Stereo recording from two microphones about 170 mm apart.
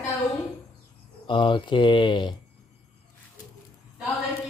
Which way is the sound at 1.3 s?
30° left (ahead or behind).